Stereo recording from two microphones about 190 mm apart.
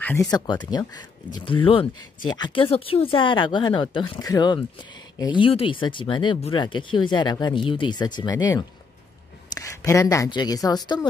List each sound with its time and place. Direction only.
0.0 s speech: 15° left (ahead or behind)